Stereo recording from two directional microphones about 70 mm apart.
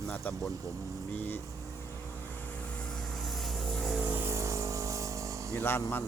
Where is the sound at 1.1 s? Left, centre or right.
Left.